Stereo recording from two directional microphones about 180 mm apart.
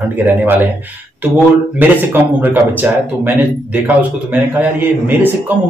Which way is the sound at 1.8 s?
10° right (ahead or behind).